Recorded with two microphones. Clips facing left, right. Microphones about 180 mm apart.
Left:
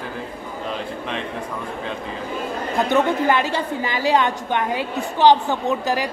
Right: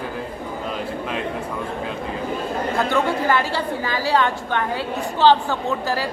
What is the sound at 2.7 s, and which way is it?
A woman's voice, 20° left (ahead or behind).